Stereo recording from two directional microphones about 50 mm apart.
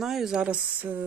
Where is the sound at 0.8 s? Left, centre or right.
Right.